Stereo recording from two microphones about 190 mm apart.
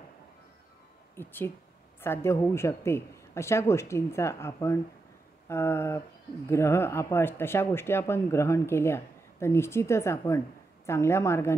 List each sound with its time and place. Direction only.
1.1 s speech: 10° left (ahead or behind)